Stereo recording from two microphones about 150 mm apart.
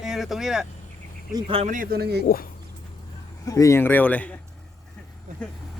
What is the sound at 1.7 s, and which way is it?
Speech, 75° right (ahead or behind).